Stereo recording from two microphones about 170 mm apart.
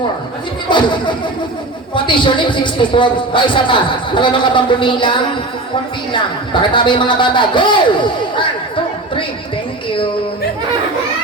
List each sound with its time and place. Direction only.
0.7 s a man's voice: 25° left (ahead or behind)
6.5 s a man's voice: 30° left (ahead or behind)